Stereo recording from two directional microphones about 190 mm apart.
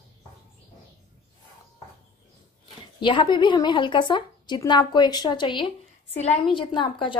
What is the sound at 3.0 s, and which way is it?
A woman's voice, 25° left (ahead or behind).